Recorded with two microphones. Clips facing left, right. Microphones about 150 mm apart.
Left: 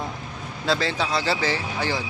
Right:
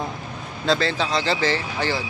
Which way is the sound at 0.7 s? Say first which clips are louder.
Right 2 dB; 10° left (ahead or behind).